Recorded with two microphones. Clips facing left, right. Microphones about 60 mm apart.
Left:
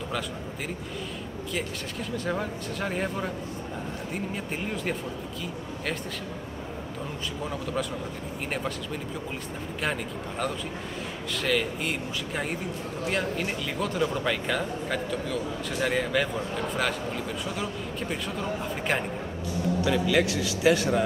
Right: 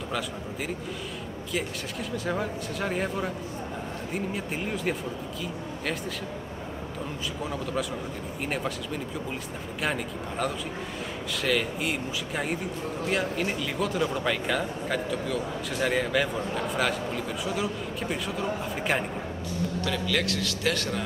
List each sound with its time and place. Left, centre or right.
1.5 s speech: centre
7.5 s speech: centre
11.4 s speech: centre
19.8 s a man's voice: centre